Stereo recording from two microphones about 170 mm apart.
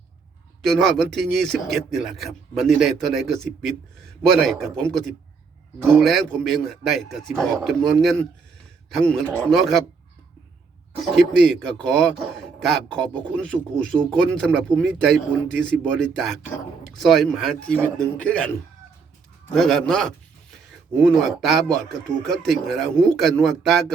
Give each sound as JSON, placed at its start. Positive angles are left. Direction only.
{"t": 0.6, "sound": "a man's voice", "side_deg": 0}
{"t": 11.1, "sound": "a man's voice", "side_deg": 5}
{"t": 19.5, "sound": "a man's voice", "side_deg": 5}